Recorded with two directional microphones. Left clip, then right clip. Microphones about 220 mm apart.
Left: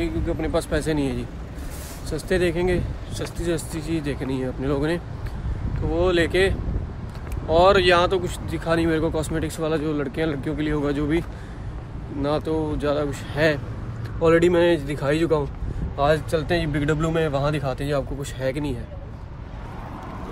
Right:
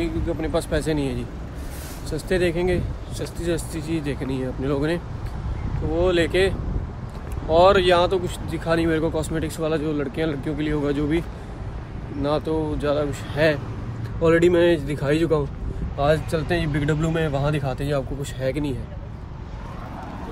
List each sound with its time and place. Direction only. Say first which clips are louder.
0.0 s speech: even; 5° left (ahead or behind)